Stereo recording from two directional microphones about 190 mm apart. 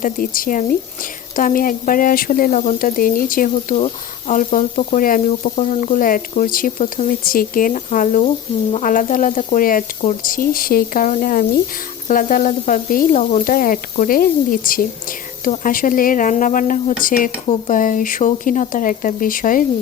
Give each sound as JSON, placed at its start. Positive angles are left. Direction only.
{"t": 0.0, "sound": "speech", "side_deg": 45}